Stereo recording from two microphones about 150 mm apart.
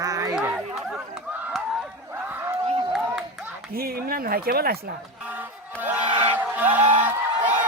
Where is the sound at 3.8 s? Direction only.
90° right.